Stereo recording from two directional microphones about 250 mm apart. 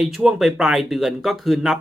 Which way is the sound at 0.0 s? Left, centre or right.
Centre.